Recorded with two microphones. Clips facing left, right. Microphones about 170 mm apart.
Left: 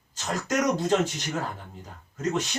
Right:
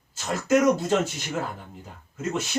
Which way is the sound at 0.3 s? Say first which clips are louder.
Right 5 dB; 5° right (ahead or behind).